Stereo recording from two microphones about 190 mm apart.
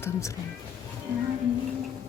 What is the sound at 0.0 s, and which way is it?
Speech, 15° left (ahead or behind).